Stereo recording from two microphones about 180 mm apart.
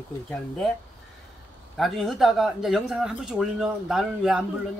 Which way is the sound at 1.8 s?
Centre (ahead or behind).